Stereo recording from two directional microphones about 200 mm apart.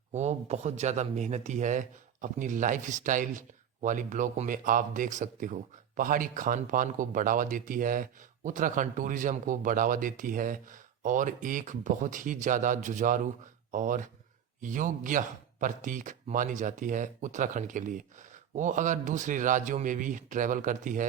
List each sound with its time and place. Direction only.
0.1 s speech: 35° right (ahead or behind)